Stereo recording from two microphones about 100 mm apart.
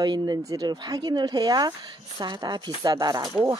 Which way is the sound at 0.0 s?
45° right (ahead or behind).